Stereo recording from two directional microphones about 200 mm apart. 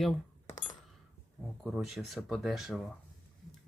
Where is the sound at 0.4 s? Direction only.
40° left (ahead or behind).